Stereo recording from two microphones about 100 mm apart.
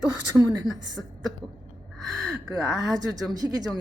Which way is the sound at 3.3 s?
40° right (ahead or behind).